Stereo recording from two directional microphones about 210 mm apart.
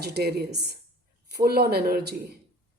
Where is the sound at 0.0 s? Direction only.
50° right (ahead or behind).